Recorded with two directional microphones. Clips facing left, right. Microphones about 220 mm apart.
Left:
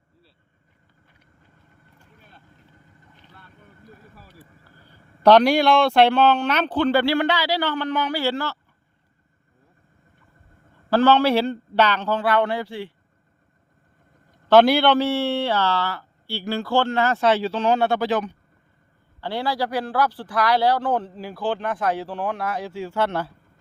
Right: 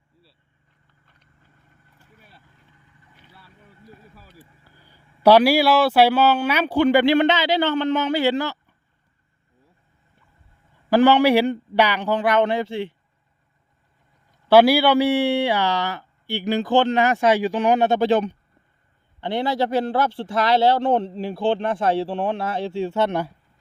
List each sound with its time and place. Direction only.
2.0 s boat: 10° right (ahead or behind)
4.1 s speech: centre (ahead or behind); by 8.5 s 20° right (ahead or behind)
10.8 s speech: 15° right (ahead or behind)
14.4 s speech: 10° right (ahead or behind)